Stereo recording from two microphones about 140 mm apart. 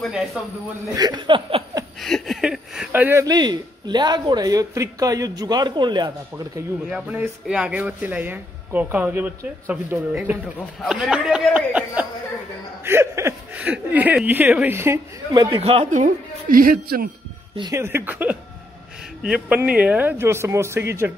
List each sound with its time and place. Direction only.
0.0 s speech: centre (ahead or behind)
0.9 s speech: 30° right (ahead or behind)
2.0 s a sound: centre (ahead or behind)
2.9 s speech: 15° right (ahead or behind)
3.3 s speech: 30° right (ahead or behind)
6.9 s speech: 10° right (ahead or behind)
15.3 s speech: 30° right (ahead or behind)
15.6 s speech: 45° right (ahead or behind)
15.9 s speech: 75° right (ahead or behind)
17.7 s speech: 15° right (ahead or behind)